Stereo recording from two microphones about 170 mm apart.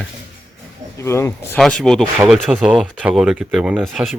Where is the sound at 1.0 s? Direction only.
15° left (ahead or behind).